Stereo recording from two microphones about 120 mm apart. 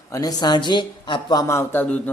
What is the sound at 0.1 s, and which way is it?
Speech, 30° left (ahead or behind).